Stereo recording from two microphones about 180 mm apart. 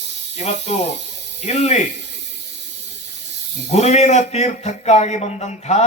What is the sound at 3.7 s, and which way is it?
Speech, 40° left (ahead or behind).